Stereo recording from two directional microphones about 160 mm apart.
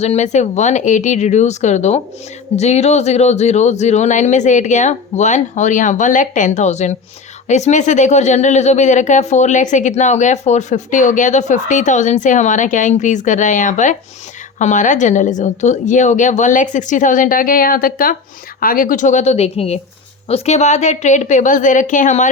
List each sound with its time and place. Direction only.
0.0 s speech: 45° left (ahead or behind)